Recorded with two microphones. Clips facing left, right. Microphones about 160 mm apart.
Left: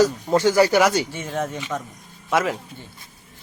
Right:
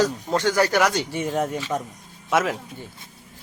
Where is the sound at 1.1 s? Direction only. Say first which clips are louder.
Right 3 dB; 15° right (ahead or behind).